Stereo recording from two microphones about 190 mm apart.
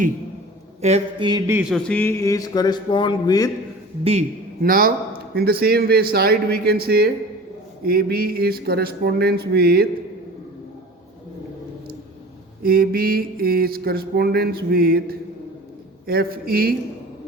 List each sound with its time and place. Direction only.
0.8 s a sound: 35° right (ahead or behind)
1.3 s speech: 20° right (ahead or behind)
1.7 s speech: 10° left (ahead or behind)
4.0 s a sound: 35° right (ahead or behind)
4.6 s mantra: 50° right (ahead or behind)
5.3 s speech: 55° right (ahead or behind)
12.6 s mantra: 55° right (ahead or behind)